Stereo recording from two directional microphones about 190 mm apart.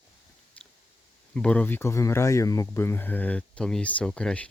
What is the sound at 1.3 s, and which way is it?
Speech, 5° left (ahead or behind).